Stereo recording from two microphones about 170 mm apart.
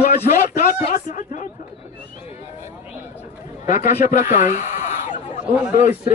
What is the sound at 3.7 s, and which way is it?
Speech, 50° left (ahead or behind).